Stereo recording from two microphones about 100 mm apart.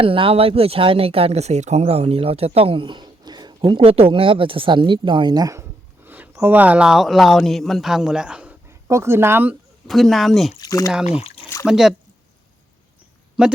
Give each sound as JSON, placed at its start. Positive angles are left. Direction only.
{"t": 0.0, "sound": "speech", "side_deg": -65}
{"t": 3.8, "sound": "speech", "side_deg": -75}
{"t": 6.1, "sound": "speech", "side_deg": -20}
{"t": 8.9, "sound": "speech", "side_deg": -25}
{"t": 9.8, "sound": "speech", "side_deg": 0}
{"t": 10.6, "sound": "speech", "side_deg": 35}
{"t": 11.6, "sound": "speech", "side_deg": -5}
{"t": 13.4, "sound": "speech", "side_deg": -5}